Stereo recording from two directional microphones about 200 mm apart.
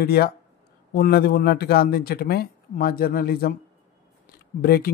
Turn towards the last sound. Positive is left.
turn(degrees=45)  # may be behind; listen again after turning